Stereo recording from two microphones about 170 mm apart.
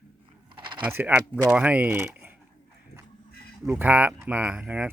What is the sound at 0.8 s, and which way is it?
Speech, 10° right (ahead or behind).